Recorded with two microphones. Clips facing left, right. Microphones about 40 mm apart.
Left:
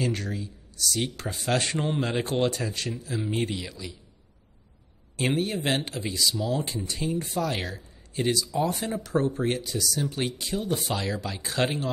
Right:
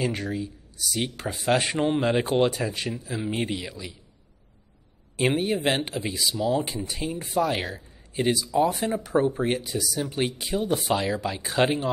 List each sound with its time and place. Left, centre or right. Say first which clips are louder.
0.0 s speech: right 2 dB; centre
5.1 s speech: right 3 dB; centre